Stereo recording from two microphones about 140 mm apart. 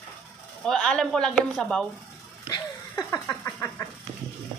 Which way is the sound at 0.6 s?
5° left (ahead or behind).